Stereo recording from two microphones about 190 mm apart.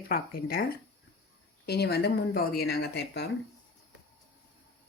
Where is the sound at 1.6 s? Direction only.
60° left (ahead or behind).